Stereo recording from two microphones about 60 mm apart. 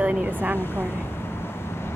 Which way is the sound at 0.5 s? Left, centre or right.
Left.